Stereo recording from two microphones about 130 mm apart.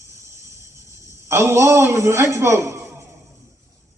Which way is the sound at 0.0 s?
20° right (ahead or behind).